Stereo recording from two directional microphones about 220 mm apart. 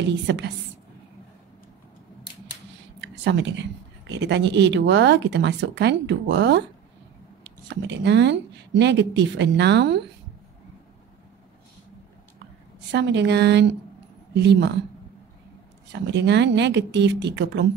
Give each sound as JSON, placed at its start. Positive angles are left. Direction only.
{"t": 0.0, "sound": "speech", "side_deg": -50}
{"t": 3.0, "sound": "a sound", "side_deg": -55}
{"t": 4.1, "sound": "speech", "side_deg": -50}
{"t": 12.9, "sound": "speech", "side_deg": -50}
{"t": 15.9, "sound": "speech", "side_deg": -50}